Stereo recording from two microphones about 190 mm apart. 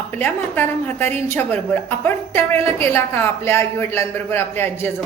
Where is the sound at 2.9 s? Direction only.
10° left (ahead or behind).